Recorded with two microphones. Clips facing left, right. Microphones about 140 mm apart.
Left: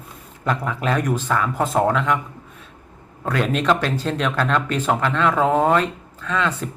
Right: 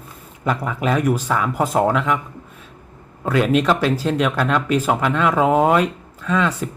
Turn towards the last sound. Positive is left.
turn(degrees=-10)  # may be behind; listen again after turning